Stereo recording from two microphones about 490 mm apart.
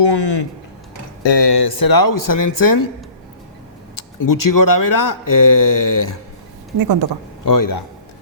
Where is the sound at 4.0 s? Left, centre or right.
Left.